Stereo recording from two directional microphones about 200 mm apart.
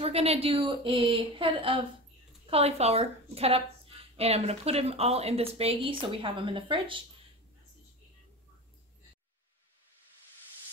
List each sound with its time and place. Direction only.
0.0 s a woman's voice: 30° right (ahead or behind)